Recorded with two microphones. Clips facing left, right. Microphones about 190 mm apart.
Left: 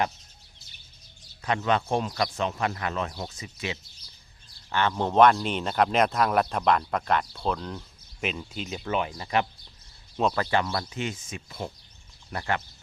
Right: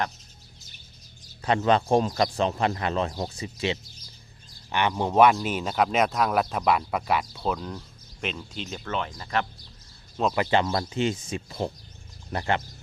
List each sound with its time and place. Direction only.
1.4 s speech: 35° right (ahead or behind)
4.7 s speech: 15° right (ahead or behind); by 9.5 s 15° left (ahead or behind)
10.3 s speech: 20° right (ahead or behind)